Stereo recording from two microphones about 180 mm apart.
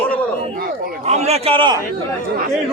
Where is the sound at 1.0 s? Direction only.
35° right (ahead or behind).